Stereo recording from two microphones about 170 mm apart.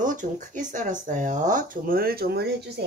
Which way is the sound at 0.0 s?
50° right (ahead or behind).